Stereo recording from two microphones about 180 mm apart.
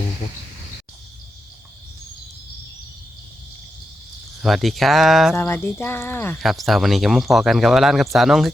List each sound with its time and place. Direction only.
4.4 s speech: centre (ahead or behind)
5.4 s speech: 10° left (ahead or behind)
6.4 s speech: centre (ahead or behind)